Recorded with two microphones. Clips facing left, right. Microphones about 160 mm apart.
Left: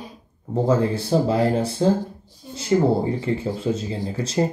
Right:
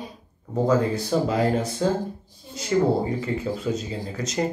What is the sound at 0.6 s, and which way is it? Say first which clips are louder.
Speech: left 1 dB; 30° left (ahead or behind).